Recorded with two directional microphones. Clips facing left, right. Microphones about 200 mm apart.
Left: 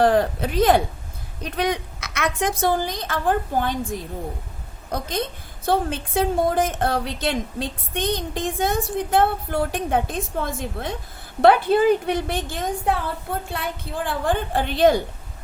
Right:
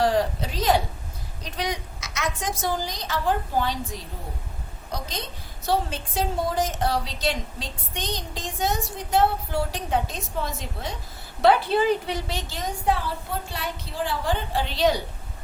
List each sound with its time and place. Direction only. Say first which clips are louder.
0.0 s a woman's voice: left 4 dB; 55° left (ahead or behind)